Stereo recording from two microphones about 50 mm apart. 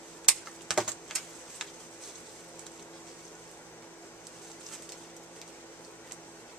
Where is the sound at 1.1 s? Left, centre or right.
Centre.